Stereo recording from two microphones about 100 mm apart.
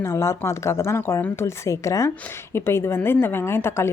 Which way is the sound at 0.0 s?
30° left (ahead or behind).